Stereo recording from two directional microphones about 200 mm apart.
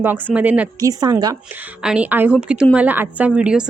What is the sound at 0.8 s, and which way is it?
Speech, 15° right (ahead or behind).